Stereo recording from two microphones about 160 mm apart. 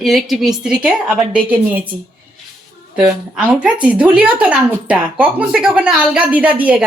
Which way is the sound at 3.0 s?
10° right (ahead or behind).